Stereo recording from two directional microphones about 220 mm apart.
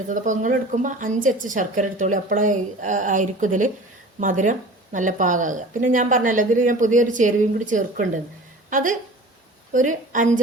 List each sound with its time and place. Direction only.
0.1 s a woman's voice: 35° right (ahead or behind)